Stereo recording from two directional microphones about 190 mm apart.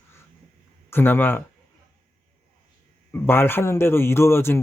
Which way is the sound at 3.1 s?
10° left (ahead or behind).